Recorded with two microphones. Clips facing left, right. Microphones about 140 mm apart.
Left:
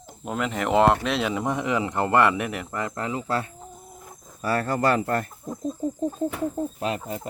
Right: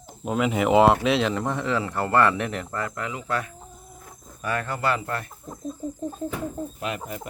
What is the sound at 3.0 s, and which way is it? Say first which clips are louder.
Speech: left 4 dB; 30° left (ahead or behind).